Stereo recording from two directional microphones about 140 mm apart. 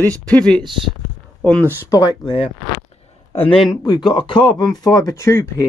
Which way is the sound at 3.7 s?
30° left (ahead or behind).